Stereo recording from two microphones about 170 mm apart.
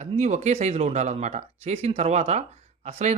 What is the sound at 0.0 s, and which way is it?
Speech, 40° right (ahead or behind).